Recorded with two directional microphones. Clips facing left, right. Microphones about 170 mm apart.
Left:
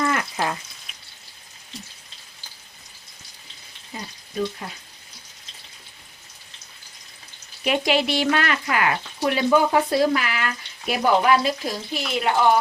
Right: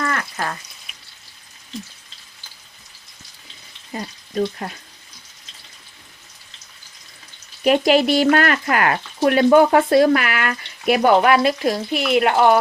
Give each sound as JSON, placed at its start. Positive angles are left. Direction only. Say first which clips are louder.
{"t": 0.0, "sound": "frying", "louder": "left 1 dB", "side_deg": 10}
{"t": 3.9, "sound": "speech", "louder": "right 6 dB", "side_deg": -60}
{"t": 7.6, "sound": "speech", "louder": "right 6 dB", "side_deg": -45}